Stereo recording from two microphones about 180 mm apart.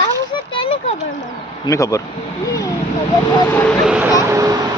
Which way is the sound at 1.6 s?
15° left (ahead or behind).